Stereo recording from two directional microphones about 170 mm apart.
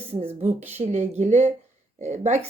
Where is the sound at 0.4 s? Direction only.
40° right (ahead or behind).